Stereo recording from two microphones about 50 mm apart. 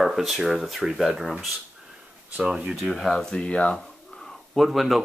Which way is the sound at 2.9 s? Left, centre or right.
Centre.